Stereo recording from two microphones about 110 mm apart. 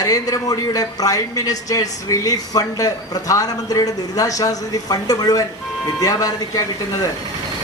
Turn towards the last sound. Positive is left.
turn(degrees=35)  # may be behind; listen again after turning